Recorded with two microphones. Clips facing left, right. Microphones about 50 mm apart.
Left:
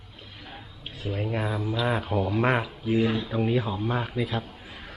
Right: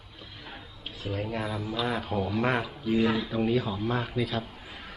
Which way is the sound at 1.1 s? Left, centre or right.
Centre.